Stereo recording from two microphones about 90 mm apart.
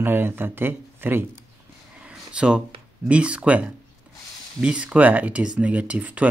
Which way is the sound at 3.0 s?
15° right (ahead or behind).